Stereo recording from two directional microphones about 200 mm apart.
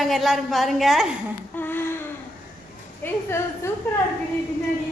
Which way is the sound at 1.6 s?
10° left (ahead or behind).